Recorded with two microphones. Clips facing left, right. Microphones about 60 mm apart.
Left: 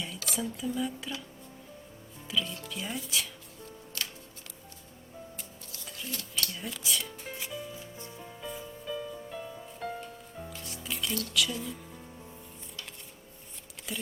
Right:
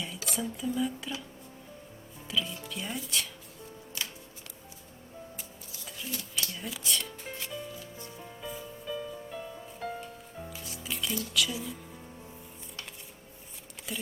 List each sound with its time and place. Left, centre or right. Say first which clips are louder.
0.3 s speech: right 1 dB; centre
2.2 s speech: even; centre
5.4 s music: even; centre
7.7 s music: even; left
8.2 s music: even; centre
13.9 s speech: even; centre